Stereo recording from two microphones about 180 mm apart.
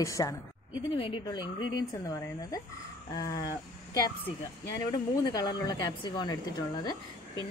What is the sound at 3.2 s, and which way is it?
Speech, 20° left (ahead or behind).